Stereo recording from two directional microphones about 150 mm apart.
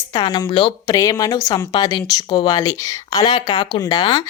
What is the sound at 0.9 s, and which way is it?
A woman's voice, 20° left (ahead or behind).